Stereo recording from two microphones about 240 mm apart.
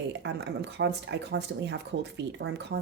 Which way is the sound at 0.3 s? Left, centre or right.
Right.